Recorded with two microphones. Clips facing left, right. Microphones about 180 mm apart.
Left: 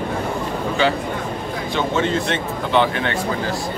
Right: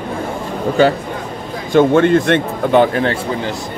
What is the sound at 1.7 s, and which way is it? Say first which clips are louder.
Speech: right 11 dB; 55° right (ahead or behind).